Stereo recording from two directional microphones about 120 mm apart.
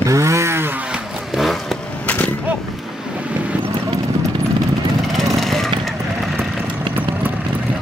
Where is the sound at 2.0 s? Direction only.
10° left (ahead or behind).